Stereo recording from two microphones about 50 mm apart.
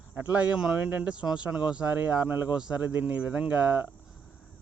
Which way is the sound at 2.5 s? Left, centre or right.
Centre.